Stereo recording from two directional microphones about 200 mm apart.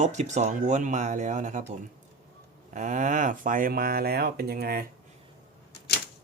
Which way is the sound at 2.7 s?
40° right (ahead or behind).